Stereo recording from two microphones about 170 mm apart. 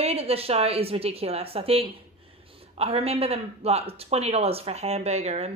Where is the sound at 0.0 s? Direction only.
35° right (ahead or behind).